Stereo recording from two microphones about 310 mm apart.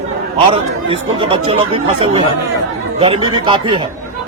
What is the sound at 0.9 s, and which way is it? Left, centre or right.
Speech, centre.